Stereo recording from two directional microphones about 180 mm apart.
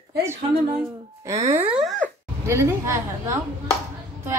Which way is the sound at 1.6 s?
5° right (ahead or behind).